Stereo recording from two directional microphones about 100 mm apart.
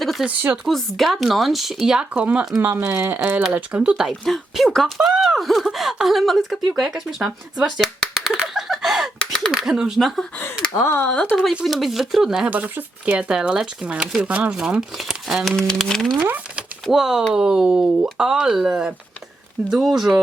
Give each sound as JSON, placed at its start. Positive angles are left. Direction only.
{"t": 0.0, "sound": "a sound", "side_deg": 0}
{"t": 0.3, "sound": "speech", "side_deg": -10}
{"t": 0.7, "sound": "speech", "side_deg": 0}
{"t": 2.6, "sound": "speech", "side_deg": -20}
{"t": 7.5, "sound": "a sound", "side_deg": -5}
{"t": 9.5, "sound": "speech", "side_deg": -5}
{"t": 10.8, "sound": "speech", "side_deg": 25}
{"t": 11.3, "sound": "speech", "side_deg": -5}
{"t": 16.2, "sound": "a sound", "side_deg": -15}
{"t": 16.8, "sound": "speech", "side_deg": -5}